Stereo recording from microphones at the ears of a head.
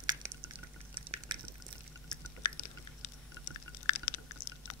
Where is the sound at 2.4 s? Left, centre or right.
Left.